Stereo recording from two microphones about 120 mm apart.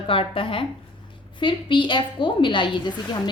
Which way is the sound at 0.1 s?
50° left (ahead or behind).